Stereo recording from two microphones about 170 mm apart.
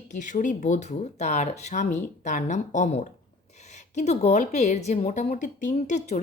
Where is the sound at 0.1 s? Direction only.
45° left (ahead or behind).